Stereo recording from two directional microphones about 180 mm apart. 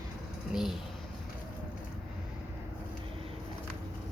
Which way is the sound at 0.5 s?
5° right (ahead or behind).